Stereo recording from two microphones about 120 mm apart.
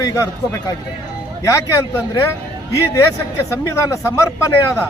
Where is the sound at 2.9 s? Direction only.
25° left (ahead or behind).